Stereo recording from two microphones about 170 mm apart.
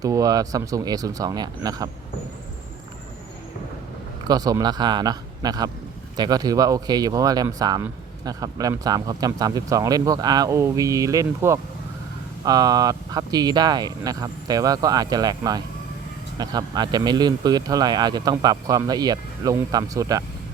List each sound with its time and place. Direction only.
0.0 s speech: 20° right (ahead or behind)
4.3 s speech: 20° right (ahead or behind)